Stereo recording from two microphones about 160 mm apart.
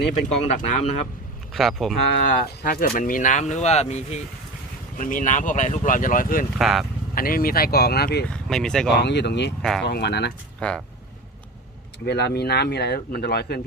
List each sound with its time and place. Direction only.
0.1 s speech: 50° left (ahead or behind)
1.5 s speech: centre (ahead or behind)
2.6 s speech: 70° left (ahead or behind); by 4.2 s 45° left (ahead or behind)
4.9 s speech: 55° left (ahead or behind)
6.6 s speech: centre (ahead or behind)
7.2 s speech: 65° left (ahead or behind); by 8.3 s 90° left
8.3 s speech: 5° left (ahead or behind)
8.9 s speech: 90° left
9.6 s speech: centre (ahead or behind)
9.8 s speech: 90° left
10.6 s speech: 5° left (ahead or behind)
12.0 s speech: 90° left